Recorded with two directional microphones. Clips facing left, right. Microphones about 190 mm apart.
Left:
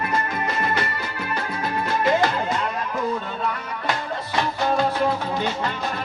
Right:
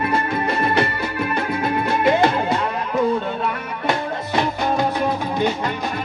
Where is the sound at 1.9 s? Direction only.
25° right (ahead or behind).